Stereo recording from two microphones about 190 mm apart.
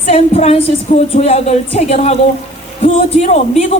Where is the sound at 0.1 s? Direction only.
35° left (ahead or behind).